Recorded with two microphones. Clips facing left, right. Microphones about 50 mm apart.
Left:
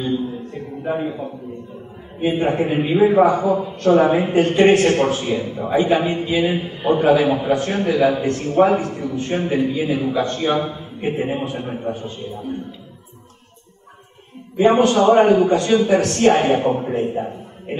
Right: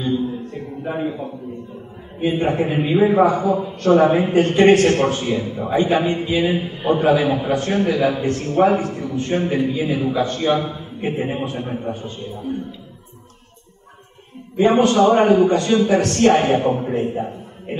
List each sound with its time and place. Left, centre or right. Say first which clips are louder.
0.8 s a man's voice: left 1 dB; centre
14.6 s a man's voice: left 1 dB; centre
15.0 s a man's voice: left 1 dB; centre
15.2 s a man's voice: even; centre
16.6 s speech: even; centre